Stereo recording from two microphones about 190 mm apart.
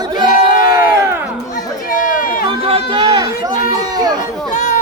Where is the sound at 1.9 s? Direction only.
45° left (ahead or behind).